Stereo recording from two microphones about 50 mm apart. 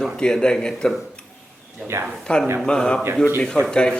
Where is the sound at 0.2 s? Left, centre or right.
Centre.